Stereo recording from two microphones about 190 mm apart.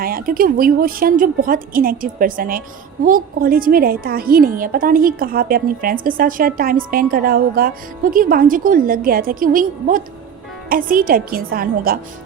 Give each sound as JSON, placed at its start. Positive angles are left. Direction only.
{"t": 0.0, "sound": "speech", "side_deg": -50}